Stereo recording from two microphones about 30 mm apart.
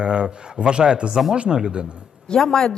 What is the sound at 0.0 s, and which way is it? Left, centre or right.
A man's voice, right.